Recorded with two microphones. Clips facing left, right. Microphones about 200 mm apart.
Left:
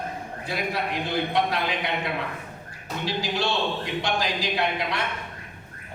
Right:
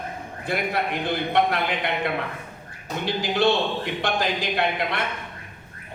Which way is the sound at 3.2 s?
55° right (ahead or behind).